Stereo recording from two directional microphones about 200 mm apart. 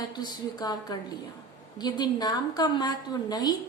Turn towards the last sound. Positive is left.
turn(degrees=20)  # may be behind; listen again after turning